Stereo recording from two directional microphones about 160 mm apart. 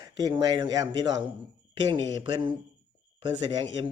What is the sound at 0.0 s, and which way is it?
Speech, 25° right (ahead or behind).